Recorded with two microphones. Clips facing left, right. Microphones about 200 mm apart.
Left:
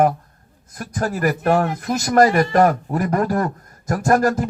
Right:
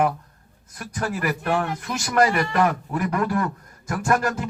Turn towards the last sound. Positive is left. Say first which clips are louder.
# left 6 dB
turn(degrees=40)  # may be behind; listen again after turning